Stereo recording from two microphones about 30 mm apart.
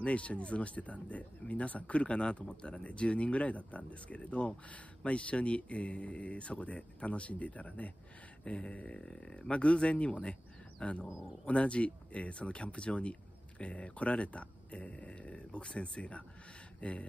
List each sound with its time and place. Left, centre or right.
0.0 s speech: left
8.9 s speech: left